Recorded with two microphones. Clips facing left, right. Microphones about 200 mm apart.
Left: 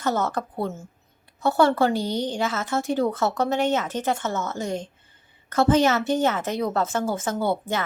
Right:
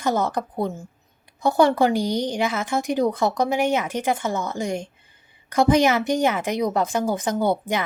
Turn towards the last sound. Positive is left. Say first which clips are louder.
# right 3 dB
turn(degrees=-15)  # may be behind; listen again after turning